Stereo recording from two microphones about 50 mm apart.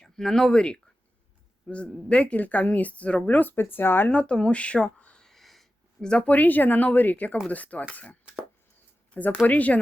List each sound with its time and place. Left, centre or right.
0.0 s a woman's voice: centre; by 3.3 s left
3.3 s speech: left
4.1 s a woman's voice: left
4.9 s a sound: left
5.2 s a sound: centre
6.0 s speech: left
9.5 s speech: left